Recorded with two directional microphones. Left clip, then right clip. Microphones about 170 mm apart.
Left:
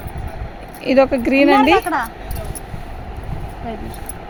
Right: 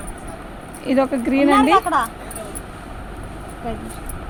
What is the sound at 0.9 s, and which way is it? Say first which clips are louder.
Speech: left 5 dB; 55° left (ahead or behind).